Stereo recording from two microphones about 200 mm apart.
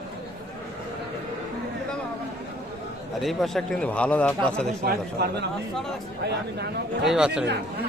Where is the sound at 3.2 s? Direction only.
Centre (ahead or behind).